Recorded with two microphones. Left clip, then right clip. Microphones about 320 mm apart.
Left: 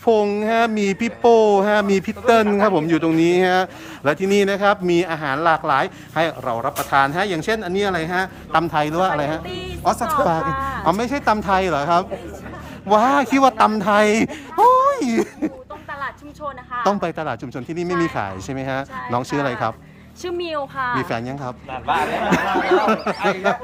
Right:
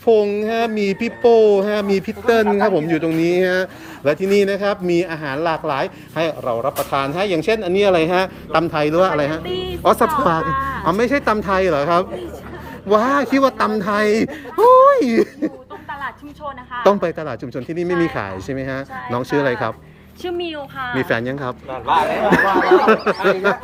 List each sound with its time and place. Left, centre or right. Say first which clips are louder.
0.0 s speech: right 2 dB; centre
9.5 s speech: right 6 dB; centre
9.8 s speech: right 3 dB; centre
16.8 s speech: right 5 dB; centre
21.0 s speech: right 5 dB; centre